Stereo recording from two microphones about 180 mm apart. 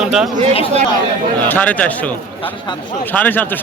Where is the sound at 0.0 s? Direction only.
5° right (ahead or behind).